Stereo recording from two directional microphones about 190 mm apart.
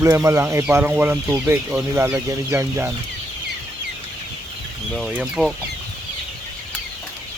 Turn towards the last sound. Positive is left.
turn(degrees=-5)  # may be behind; listen again after turning